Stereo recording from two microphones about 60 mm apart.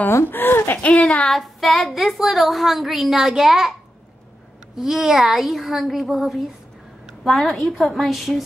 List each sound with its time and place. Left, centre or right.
0.1 s speech: left
1.3 s speech: centre
4.7 s speech: centre